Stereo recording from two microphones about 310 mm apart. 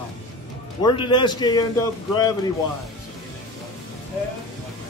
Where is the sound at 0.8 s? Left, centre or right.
Centre.